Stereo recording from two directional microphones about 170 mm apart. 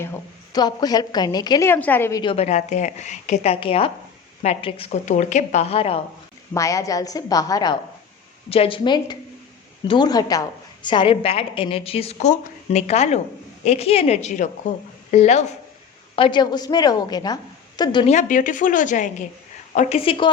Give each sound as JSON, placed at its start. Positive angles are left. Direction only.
{"t": 0.5, "sound": "a woman's voice", "side_deg": 20}
{"t": 2.2, "sound": "a woman's voice", "side_deg": 40}
{"t": 6.5, "sound": "a woman's voice", "side_deg": 20}
{"t": 8.4, "sound": "a woman's voice", "side_deg": 35}
{"t": 16.1, "sound": "a woman's voice", "side_deg": 30}
{"t": 18.0, "sound": "a woman's voice", "side_deg": 45}
{"t": 20.1, "sound": "a woman's voice", "side_deg": 30}